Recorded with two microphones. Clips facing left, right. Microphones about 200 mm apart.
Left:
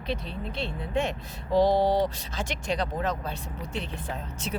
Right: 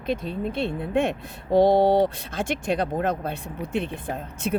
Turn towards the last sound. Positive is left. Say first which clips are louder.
# right 6 dB
turn(degrees=-55)  # may be behind; listen again after turning